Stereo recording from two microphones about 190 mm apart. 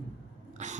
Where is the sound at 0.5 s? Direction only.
40° right (ahead or behind).